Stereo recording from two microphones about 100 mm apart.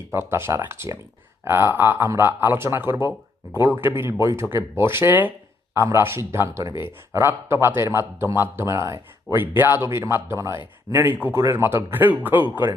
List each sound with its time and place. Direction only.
0.1 s speech: 25° right (ahead or behind)
10.9 s speech: 20° right (ahead or behind)